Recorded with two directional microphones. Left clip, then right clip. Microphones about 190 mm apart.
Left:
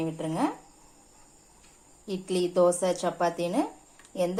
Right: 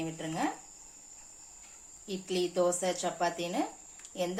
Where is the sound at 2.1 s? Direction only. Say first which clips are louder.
Left 4 dB; 30° left (ahead or behind).